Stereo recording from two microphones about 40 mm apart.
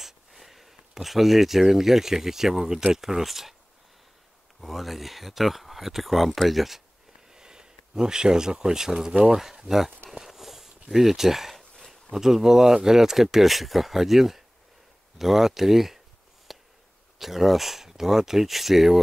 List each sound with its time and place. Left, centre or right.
0.0 s speech: centre
4.6 s speech: centre
7.2 s speech: centre
10.1 s a sound: centre
12.1 s speech: centre
16.5 s a sound: centre
17.2 s speech: centre